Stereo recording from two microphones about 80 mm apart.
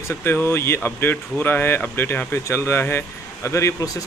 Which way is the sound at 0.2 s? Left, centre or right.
Left.